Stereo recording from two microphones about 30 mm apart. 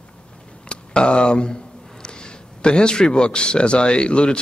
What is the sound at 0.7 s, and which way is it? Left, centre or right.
A man's voice, left.